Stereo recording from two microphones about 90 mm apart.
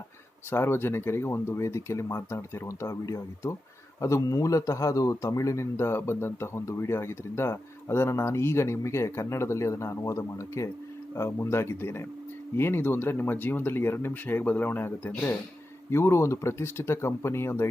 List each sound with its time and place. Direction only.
0.5 s a man's voice: 25° left (ahead or behind)